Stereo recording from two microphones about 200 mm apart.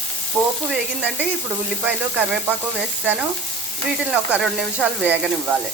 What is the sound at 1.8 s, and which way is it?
Speech, 5° right (ahead or behind).